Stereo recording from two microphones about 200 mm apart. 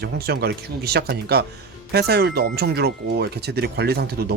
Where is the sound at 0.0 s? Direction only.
50° right (ahead or behind).